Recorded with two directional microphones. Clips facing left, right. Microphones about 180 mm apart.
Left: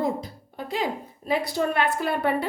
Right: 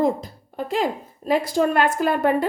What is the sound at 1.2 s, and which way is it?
Speech, 30° right (ahead or behind).